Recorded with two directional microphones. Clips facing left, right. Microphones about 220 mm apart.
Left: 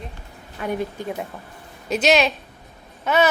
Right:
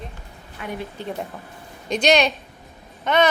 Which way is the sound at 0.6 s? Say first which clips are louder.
Left 6 dB; 40° left (ahead or behind).